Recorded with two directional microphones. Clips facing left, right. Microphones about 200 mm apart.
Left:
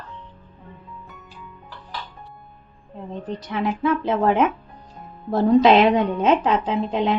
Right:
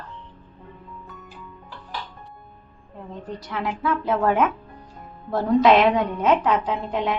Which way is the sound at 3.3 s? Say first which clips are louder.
Left 4 dB; 20° left (ahead or behind).